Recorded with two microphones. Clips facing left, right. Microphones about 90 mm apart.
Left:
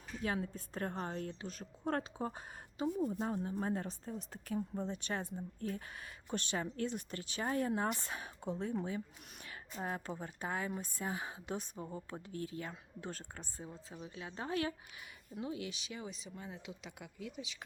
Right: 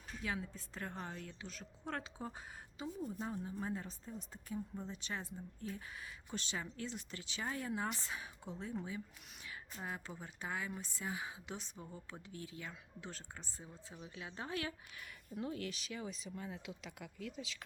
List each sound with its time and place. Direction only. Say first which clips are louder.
0.2 s a woman's voice: left 5 dB; 45° left (ahead or behind)
2.7 s a woman's voice: left 8 dB; 60° left (ahead or behind)
4.7 s a woman's voice: left 6 dB; 55° left (ahead or behind)
9.8 s a woman's voice: left 6 dB; 45° left (ahead or behind)
14.2 s speech: left 5 dB; 35° left (ahead or behind)
15.4 s speech: left 1 dB; 5° left (ahead or behind)